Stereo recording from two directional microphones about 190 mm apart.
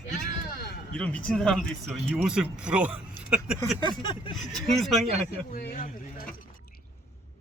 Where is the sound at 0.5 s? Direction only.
50° left (ahead or behind).